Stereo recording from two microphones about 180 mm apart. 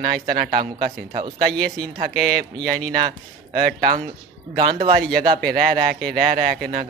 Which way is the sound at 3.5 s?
50° right (ahead or behind).